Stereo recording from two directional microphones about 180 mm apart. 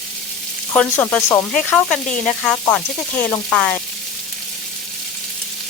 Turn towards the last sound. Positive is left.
turn(degrees=5)  # may be behind; listen again after turning